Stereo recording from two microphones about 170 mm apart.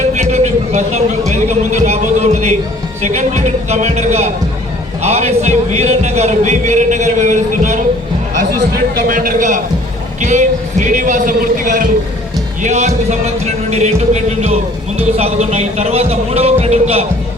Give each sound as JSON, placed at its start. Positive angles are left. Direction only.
{"t": 0.1, "sound": "a sound", "side_deg": -40}
{"t": 1.3, "sound": "speech", "side_deg": -45}
{"t": 9.0, "sound": "speech", "side_deg": -55}
{"t": 12.6, "sound": "speech", "side_deg": -40}